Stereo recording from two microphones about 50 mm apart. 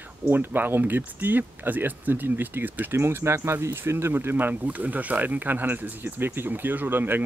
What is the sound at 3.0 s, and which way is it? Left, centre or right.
Speech, right.